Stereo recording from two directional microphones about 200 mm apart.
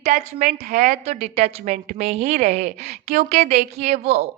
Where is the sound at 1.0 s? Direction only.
30° right (ahead or behind).